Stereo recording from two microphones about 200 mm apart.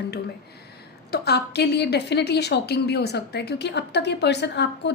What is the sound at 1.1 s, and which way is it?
A woman's voice, 55° left (ahead or behind).